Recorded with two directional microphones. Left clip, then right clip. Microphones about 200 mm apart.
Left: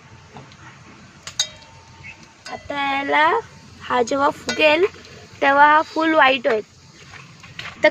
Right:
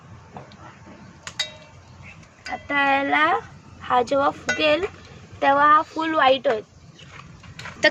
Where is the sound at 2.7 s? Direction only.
35° left (ahead or behind).